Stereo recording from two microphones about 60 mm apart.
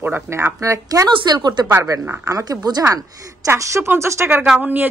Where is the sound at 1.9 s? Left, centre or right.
Right.